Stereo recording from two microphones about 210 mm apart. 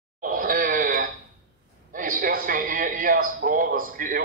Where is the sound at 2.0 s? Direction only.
40° right (ahead or behind).